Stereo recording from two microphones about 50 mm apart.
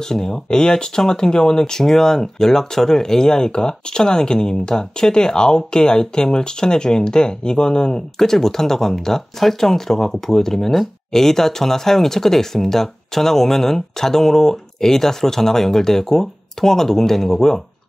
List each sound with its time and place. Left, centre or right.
0.0 s speech: centre